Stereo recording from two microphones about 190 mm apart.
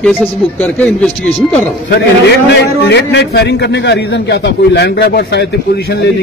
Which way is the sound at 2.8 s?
65° left (ahead or behind).